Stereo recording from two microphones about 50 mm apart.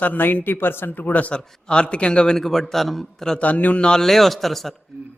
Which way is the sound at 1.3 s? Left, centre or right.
Centre.